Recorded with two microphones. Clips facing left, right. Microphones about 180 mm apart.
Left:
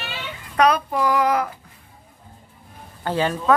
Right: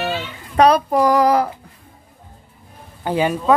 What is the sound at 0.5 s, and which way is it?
Speech, 35° right (ahead or behind).